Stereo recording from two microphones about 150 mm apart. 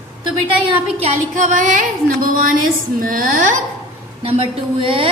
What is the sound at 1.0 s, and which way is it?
Speech, 55° right (ahead or behind).